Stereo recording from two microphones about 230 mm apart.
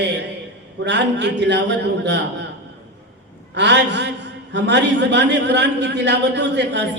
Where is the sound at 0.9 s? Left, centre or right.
Right.